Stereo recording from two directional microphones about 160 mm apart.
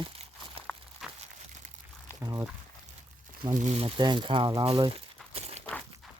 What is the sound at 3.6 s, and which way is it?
Speech, 45° right (ahead or behind).